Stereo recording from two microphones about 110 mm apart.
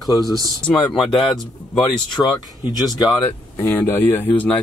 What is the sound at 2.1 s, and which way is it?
Speech, 40° left (ahead or behind).